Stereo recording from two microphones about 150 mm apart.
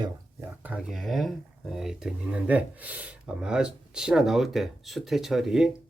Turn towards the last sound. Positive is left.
turn(degrees=-5)  # may be behind; listen again after turning